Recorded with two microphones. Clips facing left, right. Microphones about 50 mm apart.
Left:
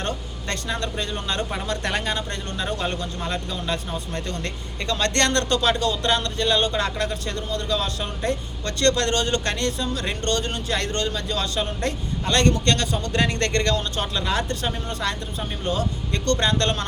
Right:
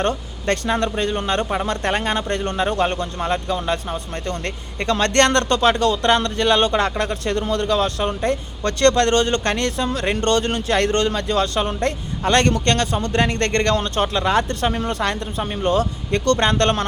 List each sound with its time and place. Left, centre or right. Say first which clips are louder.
0.0 s speech: right 7 dB; right
1.6 s speech: right 4 dB; right
4.9 s speech: right 6 dB; right
7.0 s speech: right 5 dB; right
7.3 s speech: right 7 dB; right
7.8 s speech: right 7 dB; right
9.6 s speech: right 4 dB; right
14.8 s speech: right 5 dB; right
15.4 s speech: right 7 dB; right
15.8 s speech: right 5 dB; right
16.4 s speech: right 5 dB; right